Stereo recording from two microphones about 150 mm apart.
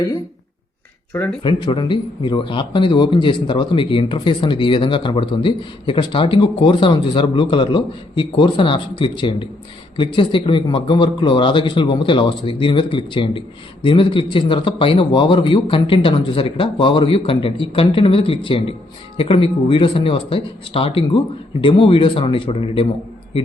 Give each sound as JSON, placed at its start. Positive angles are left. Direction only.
{"t": 1.5, "sound": "a man's voice", "side_deg": 30}